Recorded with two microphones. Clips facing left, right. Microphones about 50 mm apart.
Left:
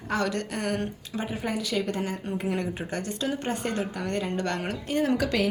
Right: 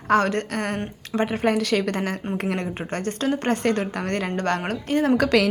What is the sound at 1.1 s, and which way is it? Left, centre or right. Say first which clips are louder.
A woman's voice: right 9 dB; right.